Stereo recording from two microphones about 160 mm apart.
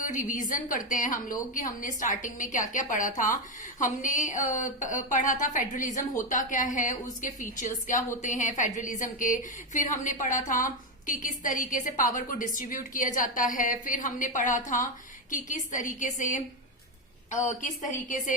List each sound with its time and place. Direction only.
0.0 s a woman's voice: 55° left (ahead or behind)
17.4 s a woman's voice: 50° left (ahead or behind)